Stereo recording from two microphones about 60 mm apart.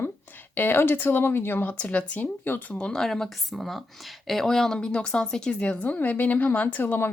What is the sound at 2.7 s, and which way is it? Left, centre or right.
Speech, centre.